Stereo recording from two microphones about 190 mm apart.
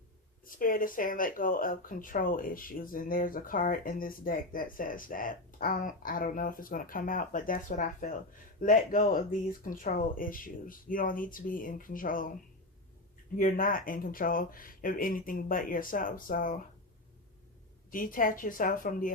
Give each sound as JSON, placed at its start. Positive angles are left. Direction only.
{"t": 0.4, "sound": "speech", "side_deg": 45}
{"t": 13.4, "sound": "speech", "side_deg": 50}
{"t": 17.9, "sound": "speech", "side_deg": 45}